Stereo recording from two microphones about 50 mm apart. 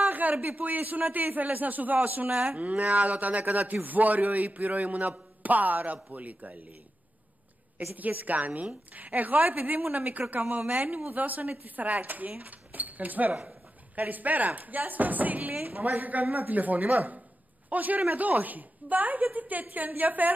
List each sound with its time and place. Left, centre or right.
0.0 s speech: right
7.9 s speech: right